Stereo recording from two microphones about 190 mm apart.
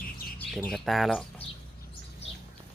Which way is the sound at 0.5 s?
Centre (ahead or behind).